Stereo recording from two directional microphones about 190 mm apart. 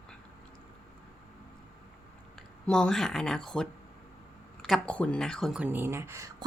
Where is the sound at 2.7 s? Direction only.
5° left (ahead or behind); by 6.4 s 15° right (ahead or behind).